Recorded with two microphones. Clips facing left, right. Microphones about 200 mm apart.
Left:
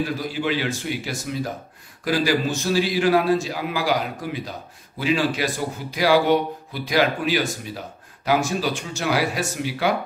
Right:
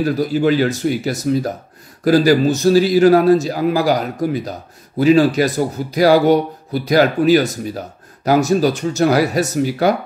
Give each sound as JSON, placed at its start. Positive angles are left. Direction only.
{"t": 0.0, "sound": "a man's voice", "side_deg": -40}